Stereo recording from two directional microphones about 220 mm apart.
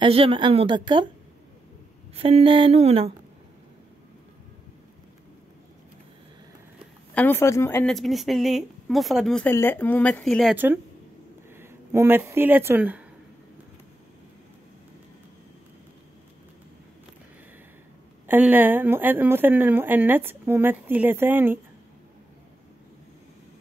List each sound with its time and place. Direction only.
0.0 s a woman's voice: 25° right (ahead or behind)
2.1 s a woman's voice: 25° right (ahead or behind)
7.2 s a woman's voice: 10° left (ahead or behind); by 13.0 s 10° right (ahead or behind)
18.2 s speech: 10° right (ahead or behind)